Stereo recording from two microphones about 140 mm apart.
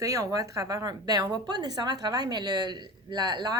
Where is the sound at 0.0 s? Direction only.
25° right (ahead or behind).